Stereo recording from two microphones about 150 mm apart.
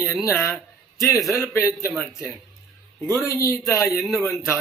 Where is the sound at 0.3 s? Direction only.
20° left (ahead or behind).